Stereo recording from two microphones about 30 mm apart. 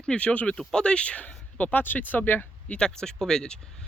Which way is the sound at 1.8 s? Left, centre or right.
Left.